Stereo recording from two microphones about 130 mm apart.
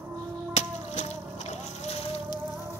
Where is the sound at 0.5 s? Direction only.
65° left (ahead or behind).